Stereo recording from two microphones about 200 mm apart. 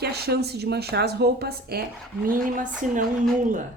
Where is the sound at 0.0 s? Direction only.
55° right (ahead or behind).